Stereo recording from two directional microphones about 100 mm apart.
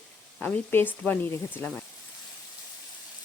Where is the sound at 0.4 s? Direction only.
20° left (ahead or behind).